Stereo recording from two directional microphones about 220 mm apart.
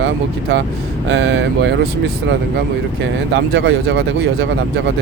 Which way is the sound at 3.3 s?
50° right (ahead or behind).